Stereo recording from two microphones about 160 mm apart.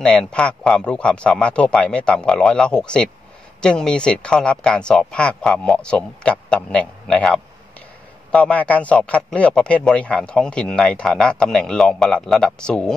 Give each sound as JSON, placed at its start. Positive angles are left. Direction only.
{"t": 0.0, "sound": "a man's voice", "side_deg": 5}